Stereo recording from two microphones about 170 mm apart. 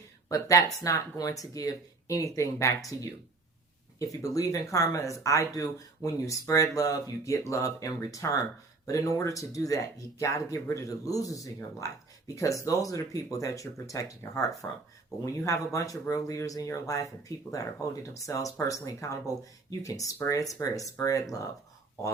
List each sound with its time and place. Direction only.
0.3 s speech: 20° left (ahead or behind)